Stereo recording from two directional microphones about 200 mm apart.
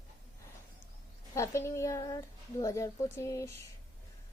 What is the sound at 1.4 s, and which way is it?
A woman's voice, 15° left (ahead or behind).